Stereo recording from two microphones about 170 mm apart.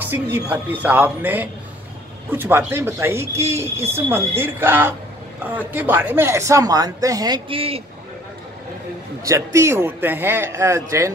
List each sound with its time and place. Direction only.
0.0 s speech: 10° right (ahead or behind); by 7.8 s 35° right (ahead or behind)
9.2 s speech: 20° right (ahead or behind)